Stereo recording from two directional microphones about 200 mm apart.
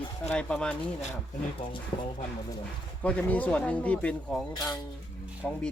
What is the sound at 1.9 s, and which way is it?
Speech, 25° left (ahead or behind).